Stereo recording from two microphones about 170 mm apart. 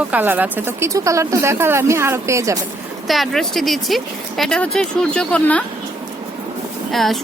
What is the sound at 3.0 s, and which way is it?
Speech, centre (ahead or behind).